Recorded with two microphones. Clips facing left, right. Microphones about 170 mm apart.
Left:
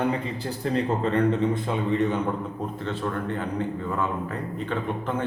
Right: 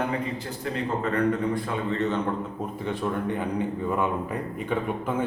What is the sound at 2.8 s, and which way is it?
A man's voice, 15° right (ahead or behind).